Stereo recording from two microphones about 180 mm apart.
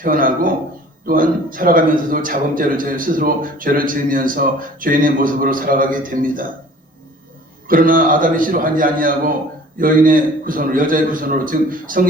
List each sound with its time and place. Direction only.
0.0 s a man's voice: 50° right (ahead or behind)
7.7 s a man's voice: 50° right (ahead or behind)